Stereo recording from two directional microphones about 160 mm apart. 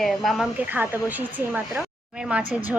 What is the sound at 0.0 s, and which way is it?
Speech, centre (ahead or behind).